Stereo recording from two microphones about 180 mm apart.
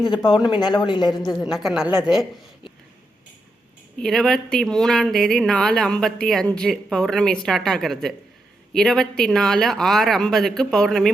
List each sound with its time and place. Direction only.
0.1 s a woman's voice: 25° left (ahead or behind)
1.4 s speech: centre (ahead or behind)
4.0 s speech: centre (ahead or behind)